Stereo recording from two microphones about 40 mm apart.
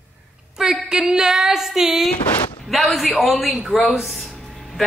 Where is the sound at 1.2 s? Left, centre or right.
Centre.